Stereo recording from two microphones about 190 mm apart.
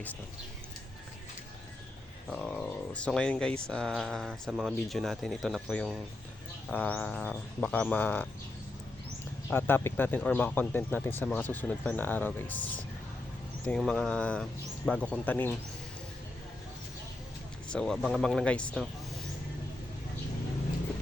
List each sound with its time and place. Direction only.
2.3 s speech: 5° left (ahead or behind)
9.5 s speech: 10° left (ahead or behind)
17.7 s speech: 5° left (ahead or behind)